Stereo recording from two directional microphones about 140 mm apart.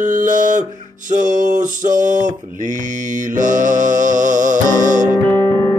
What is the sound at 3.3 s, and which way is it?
Music, 65° right (ahead or behind).